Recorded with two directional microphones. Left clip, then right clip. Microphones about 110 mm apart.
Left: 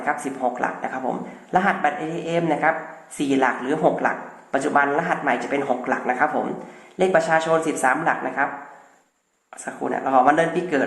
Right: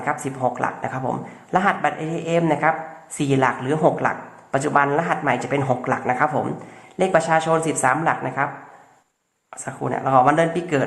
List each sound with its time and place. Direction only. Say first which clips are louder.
0.0 s a man's voice: right 1 dB; 30° right (ahead or behind)
9.6 s a man's voice: right 1 dB; 25° right (ahead or behind)